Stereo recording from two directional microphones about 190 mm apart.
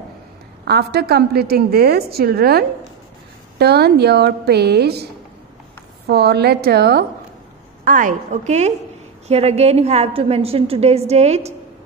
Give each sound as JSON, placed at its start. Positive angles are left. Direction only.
{"t": 0.7, "sound": "a woman's voice", "side_deg": -60}
{"t": 6.0, "sound": "a woman's voice", "side_deg": -60}
{"t": 7.8, "sound": "a woman's voice", "side_deg": -45}